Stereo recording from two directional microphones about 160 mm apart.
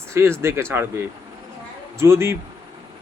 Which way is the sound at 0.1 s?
15° right (ahead or behind).